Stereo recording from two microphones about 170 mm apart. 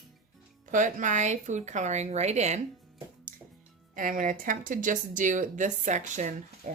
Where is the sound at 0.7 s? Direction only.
50° right (ahead or behind).